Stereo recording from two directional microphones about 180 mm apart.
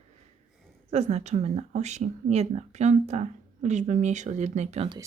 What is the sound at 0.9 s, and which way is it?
A woman's voice, 35° right (ahead or behind).